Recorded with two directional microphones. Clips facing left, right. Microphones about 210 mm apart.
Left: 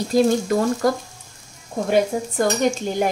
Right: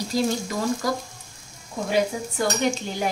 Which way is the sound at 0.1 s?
55° left (ahead or behind).